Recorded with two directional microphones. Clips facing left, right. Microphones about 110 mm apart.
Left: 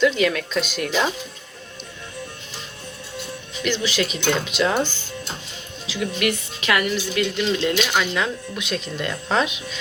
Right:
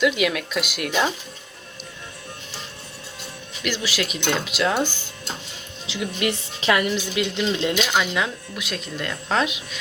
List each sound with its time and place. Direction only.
0.0 s speech: 10° right (ahead or behind)
3.6 s speech: 5° right (ahead or behind)
5.9 s speech: 25° right (ahead or behind)
8.1 s speech: 5° right (ahead or behind)